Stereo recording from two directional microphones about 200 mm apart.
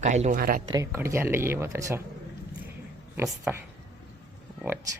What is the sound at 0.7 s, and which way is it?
Speech, 15° right (ahead or behind).